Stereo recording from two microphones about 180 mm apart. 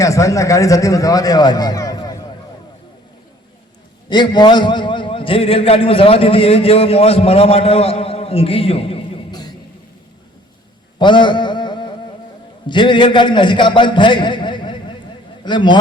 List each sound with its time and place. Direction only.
0.0 s speech: 15° left (ahead or behind)
4.1 s a man's voice: 25° left (ahead or behind)
10.9 s a sound: 25° left (ahead or behind)
12.6 s a man's voice: 25° left (ahead or behind)